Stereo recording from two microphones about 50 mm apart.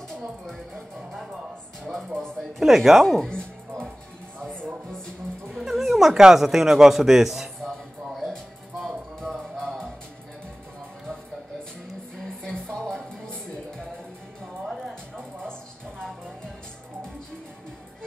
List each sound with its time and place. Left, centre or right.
0.1 s music: centre
2.1 s speech: centre
2.6 s speech: centre
3.1 s speech: centre
4.5 s music: centre
5.5 s speech: centre
7.6 s a sound: centre
8.3 s music: centre
12.2 s music: centre
14.7 s music: centre